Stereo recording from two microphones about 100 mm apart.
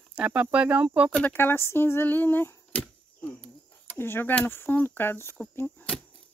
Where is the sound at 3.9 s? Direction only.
20° left (ahead or behind).